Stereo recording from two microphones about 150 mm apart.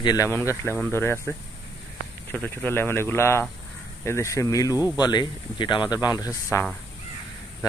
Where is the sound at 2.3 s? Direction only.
10° left (ahead or behind).